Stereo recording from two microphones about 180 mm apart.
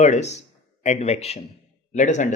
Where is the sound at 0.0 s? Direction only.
40° left (ahead or behind).